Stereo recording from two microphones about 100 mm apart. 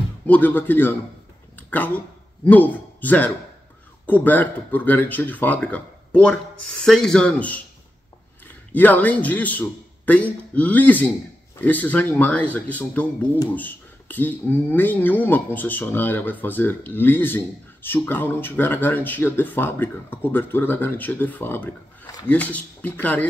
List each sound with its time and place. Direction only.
0.3 s speech: 15° left (ahead or behind)
1.6 s a sound: 15° left (ahead or behind)
2.4 s speech: 15° left (ahead or behind)
8.7 s speech: 15° left (ahead or behind)